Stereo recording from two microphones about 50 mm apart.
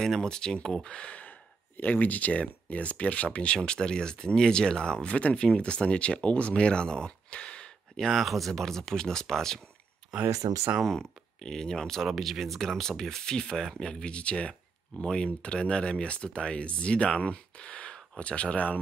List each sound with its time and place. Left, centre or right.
0.0 s speech: centre
1.8 s speech: left
7.9 s speech: centre
10.8 s speech: centre
12.0 s speech: centre; by 18.8 s left